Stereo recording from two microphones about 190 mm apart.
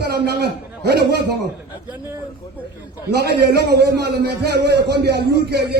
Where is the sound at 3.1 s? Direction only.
60° right (ahead or behind).